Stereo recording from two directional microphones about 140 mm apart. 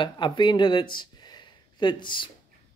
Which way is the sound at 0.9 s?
30° left (ahead or behind).